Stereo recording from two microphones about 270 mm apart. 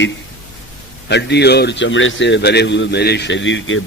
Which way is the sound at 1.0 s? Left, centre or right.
Left.